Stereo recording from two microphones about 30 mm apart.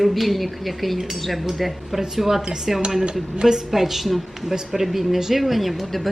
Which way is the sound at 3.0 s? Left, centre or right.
Right.